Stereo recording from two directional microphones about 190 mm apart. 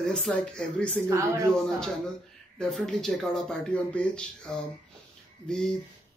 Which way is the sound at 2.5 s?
5° left (ahead or behind).